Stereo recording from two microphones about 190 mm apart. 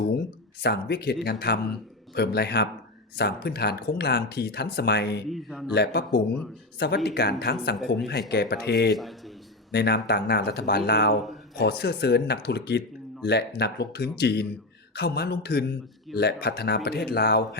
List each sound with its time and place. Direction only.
0.6 s speech: 60° left (ahead or behind)
5.3 s speech: centre (ahead or behind)
5.7 s speech: 60° left (ahead or behind)
9.0 s a sound: centre (ahead or behind)
9.7 s speech: 60° left (ahead or behind)